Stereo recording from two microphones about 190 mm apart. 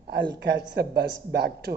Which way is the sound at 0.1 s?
60° right (ahead or behind).